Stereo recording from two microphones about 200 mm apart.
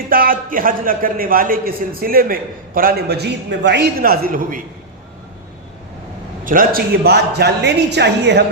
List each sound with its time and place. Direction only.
0.1 s a man's voice: 45° right (ahead or behind)
6.4 s a man's voice: 45° right (ahead or behind)